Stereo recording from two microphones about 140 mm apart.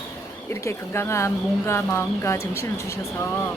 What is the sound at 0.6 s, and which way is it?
Speech, 20° left (ahead or behind).